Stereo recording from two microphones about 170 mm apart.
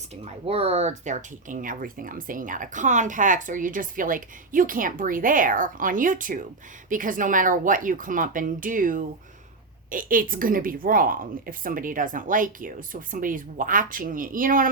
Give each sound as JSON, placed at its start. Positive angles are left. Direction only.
{"t": 0.4, "sound": "speech", "side_deg": -35}